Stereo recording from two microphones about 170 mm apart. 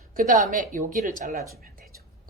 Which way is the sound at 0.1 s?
55° right (ahead or behind).